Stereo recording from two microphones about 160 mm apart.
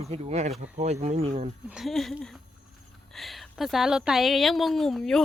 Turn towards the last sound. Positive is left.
turn(degrees=5)  # may be behind; listen again after turning